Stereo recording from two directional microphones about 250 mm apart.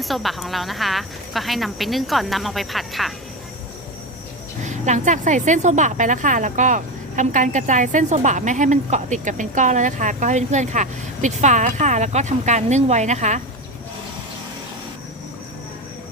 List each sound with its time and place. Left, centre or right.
0.0 s speech: centre
4.6 s a woman's voice: right